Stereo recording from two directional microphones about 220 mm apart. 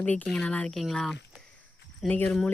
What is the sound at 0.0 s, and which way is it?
Speech, 5° left (ahead or behind).